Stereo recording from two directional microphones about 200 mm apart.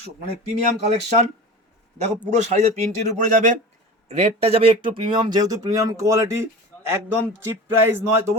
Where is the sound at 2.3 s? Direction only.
35° right (ahead or behind).